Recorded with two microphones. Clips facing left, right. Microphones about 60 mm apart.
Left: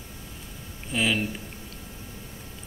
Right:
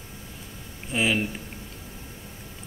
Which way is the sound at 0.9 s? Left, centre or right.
Centre.